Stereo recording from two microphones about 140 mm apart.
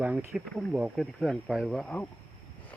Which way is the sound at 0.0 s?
10° right (ahead or behind).